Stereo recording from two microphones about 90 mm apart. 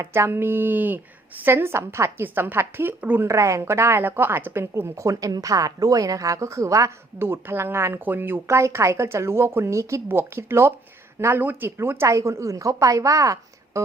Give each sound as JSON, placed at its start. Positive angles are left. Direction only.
{"t": 0.0, "sound": "speech", "side_deg": -30}
{"t": 3.2, "sound": "a woman's voice", "side_deg": -35}